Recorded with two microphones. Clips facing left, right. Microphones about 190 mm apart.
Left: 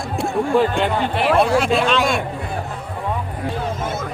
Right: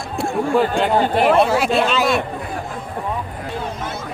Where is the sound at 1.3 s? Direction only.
Centre (ahead or behind).